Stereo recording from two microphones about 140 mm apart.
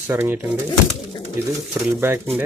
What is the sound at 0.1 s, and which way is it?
Speech, 20° right (ahead or behind).